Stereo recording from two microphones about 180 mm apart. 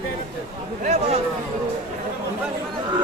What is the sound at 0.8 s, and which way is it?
Speech, 40° right (ahead or behind).